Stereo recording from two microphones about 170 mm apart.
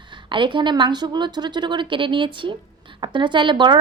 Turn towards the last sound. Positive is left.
turn(degrees=-25)  # may be behind; listen again after turning